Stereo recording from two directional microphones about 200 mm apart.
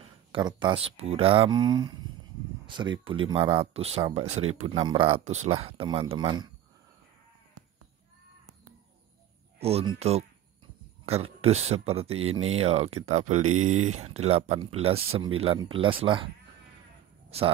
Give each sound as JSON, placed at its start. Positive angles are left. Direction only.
{"t": 0.3, "sound": "speech", "side_deg": -20}
{"t": 9.6, "sound": "speech", "side_deg": -30}